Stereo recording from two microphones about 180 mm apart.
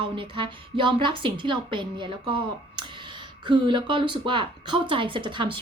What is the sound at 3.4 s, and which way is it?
Speech, 25° right (ahead or behind).